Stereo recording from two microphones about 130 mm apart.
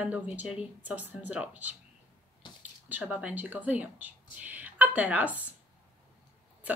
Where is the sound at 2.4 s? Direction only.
40° left (ahead or behind).